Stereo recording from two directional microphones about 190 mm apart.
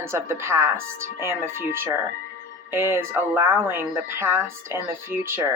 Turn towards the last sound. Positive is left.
turn(degrees=-10)  # may be behind; listen again after turning